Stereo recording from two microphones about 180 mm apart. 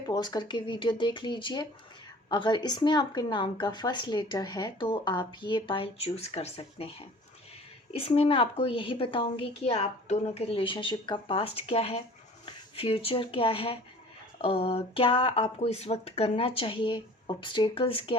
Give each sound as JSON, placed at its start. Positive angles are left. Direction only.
{"t": 0.0, "sound": "a woman's voice", "side_deg": 20}